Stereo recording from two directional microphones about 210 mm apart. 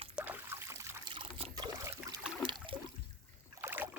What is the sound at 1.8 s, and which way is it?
Trickle, 10° right (ahead or behind).